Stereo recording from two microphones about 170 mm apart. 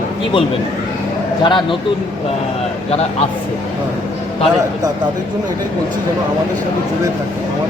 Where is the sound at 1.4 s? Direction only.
30° left (ahead or behind).